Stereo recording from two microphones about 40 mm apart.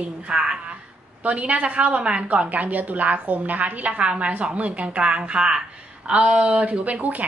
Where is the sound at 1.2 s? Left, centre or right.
Right.